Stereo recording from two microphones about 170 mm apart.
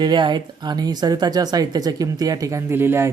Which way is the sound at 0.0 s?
25° right (ahead or behind).